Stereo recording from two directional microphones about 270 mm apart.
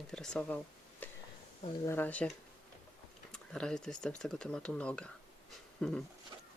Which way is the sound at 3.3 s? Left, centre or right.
Centre.